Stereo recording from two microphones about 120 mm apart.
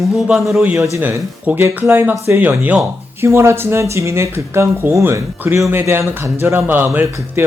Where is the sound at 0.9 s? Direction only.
25° right (ahead or behind).